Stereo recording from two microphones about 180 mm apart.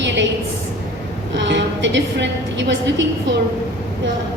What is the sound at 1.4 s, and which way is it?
A woman's voice, 80° right.